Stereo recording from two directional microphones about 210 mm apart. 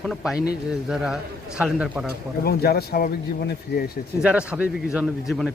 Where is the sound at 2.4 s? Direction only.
45° left (ahead or behind).